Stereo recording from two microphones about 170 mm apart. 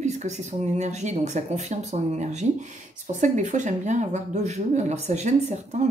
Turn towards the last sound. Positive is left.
turn(degrees=-40)  # may be behind; listen again after turning